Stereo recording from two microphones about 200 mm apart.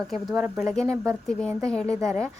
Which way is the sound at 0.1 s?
Centre (ahead or behind).